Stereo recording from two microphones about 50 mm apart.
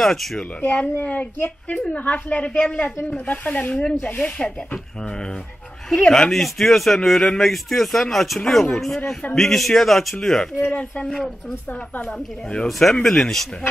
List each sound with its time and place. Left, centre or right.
0.0 s speech: centre
0.6 s a woman's voice: left
2.0 s a woman's voice: left
5.9 s speech: centre
6.3 s a man's voice: centre
12.6 s a man's voice: centre